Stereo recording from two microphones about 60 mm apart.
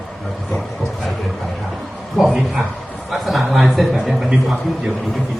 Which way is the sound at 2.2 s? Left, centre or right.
Centre.